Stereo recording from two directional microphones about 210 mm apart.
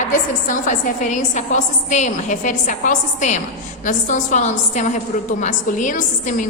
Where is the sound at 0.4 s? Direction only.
35° left (ahead or behind).